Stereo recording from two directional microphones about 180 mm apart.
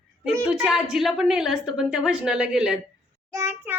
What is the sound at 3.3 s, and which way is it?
Speech, 15° right (ahead or behind).